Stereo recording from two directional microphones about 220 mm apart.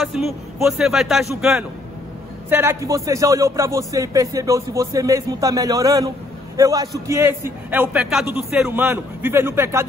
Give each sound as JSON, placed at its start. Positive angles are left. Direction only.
{"t": 0.0, "sound": "a man's voice", "side_deg": 0}